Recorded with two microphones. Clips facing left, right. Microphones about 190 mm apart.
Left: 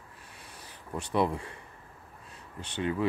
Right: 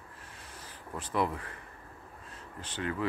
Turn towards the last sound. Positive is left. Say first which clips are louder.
# left 4 dB
turn(degrees=20)  # may be behind; listen again after turning